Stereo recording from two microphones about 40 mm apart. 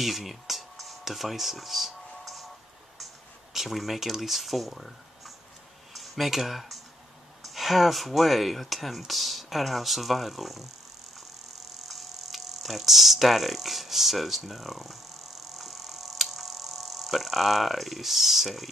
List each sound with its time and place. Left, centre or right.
0.0 s a sound: centre
3.5 s speech: centre
11.9 s speech: centre
15.5 s tick-tock: centre